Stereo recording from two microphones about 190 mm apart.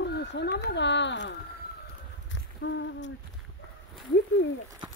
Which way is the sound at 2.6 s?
75° left (ahead or behind).